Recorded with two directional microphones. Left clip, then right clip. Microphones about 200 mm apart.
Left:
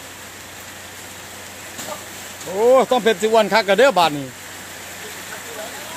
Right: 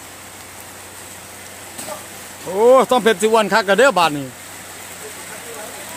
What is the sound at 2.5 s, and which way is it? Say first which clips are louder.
Speech: right 2 dB; 25° right (ahead or behind).